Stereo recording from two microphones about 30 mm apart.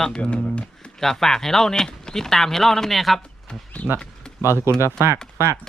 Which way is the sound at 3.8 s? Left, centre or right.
Left.